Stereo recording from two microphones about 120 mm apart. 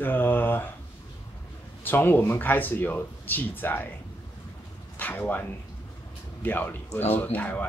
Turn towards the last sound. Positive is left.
turn(degrees=15)  # may be behind; listen again after turning